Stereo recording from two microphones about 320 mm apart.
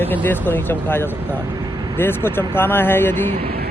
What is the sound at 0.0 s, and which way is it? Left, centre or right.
Speech, centre.